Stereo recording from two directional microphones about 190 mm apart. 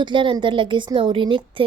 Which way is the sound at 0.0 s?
25° right (ahead or behind).